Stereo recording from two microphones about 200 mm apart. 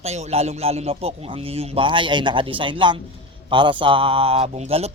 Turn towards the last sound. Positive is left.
turn(degrees=-30)  # may be behind; listen again after turning